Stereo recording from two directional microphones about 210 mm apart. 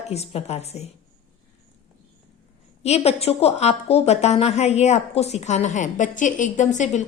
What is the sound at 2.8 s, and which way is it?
A woman's voice, 30° left (ahead or behind).